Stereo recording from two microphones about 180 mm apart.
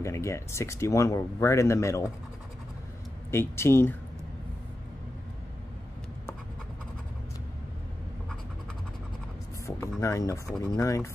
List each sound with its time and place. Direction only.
0.0 s speech: 15° left (ahead or behind)
3.3 s speech: 15° left (ahead or behind)
9.7 s a sound: 15° left (ahead or behind)
10.6 s speech: 20° left (ahead or behind)